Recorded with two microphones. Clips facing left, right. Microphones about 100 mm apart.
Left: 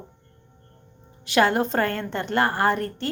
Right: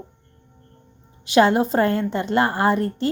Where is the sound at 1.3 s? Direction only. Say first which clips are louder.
Right 4 dB; 20° right (ahead or behind).